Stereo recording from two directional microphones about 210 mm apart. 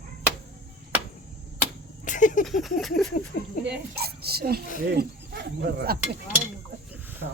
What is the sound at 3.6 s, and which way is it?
Speech, 50° right (ahead or behind).